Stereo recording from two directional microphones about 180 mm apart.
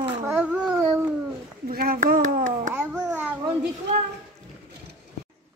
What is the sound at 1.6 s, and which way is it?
Speech, 50° right (ahead or behind).